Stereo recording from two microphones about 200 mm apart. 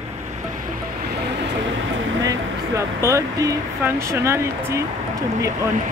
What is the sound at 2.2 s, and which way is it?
Speech, 15° right (ahead or behind).